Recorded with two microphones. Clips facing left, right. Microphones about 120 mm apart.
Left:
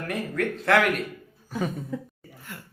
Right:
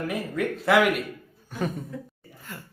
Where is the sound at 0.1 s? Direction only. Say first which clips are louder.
Even; 5° right (ahead or behind).